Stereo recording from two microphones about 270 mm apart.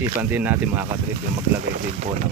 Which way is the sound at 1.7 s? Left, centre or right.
Right.